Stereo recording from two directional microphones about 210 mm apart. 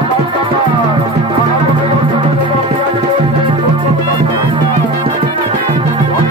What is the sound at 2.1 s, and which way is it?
Music, 25° right (ahead or behind).